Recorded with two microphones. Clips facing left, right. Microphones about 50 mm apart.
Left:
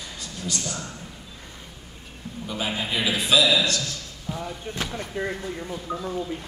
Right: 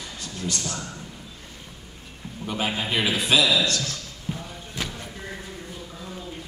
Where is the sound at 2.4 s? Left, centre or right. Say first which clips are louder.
Right 2 dB; right.